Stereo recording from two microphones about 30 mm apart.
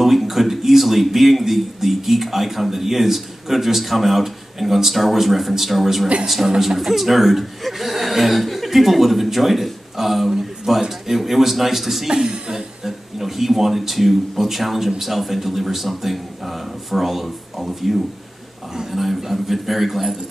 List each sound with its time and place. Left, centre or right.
0.0 s a man's voice: centre
12.1 s speech: right
12.8 s a man's voice: centre